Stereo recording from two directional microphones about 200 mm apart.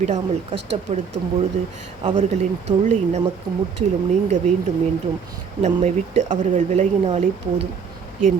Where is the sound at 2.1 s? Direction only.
35° right (ahead or behind).